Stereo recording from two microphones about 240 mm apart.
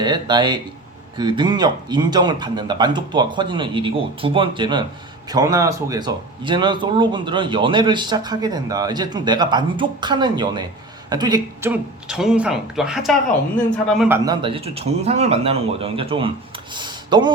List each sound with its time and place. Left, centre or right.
0.0 s speech: centre
11.7 s speech: centre
14.1 s speech: centre
16.7 s a sound: centre